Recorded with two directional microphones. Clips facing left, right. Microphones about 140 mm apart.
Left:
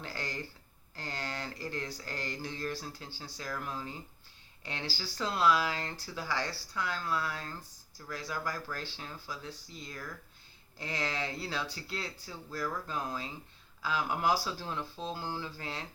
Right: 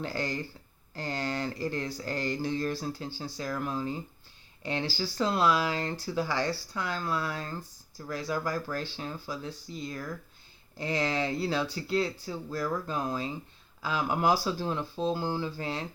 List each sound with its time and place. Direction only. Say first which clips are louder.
0.0 s speech: right 7 dB; 30° right (ahead or behind)
10.8 s speech: right 7 dB; 25° right (ahead or behind)